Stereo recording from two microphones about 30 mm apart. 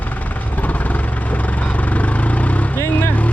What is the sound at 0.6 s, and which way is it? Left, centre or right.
Vehicle, left.